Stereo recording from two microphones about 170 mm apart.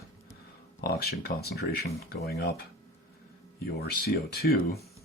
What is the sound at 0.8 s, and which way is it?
Speech, 65° left (ahead or behind).